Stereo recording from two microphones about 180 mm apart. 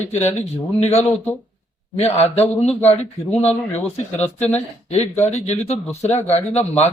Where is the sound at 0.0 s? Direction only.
40° left (ahead or behind).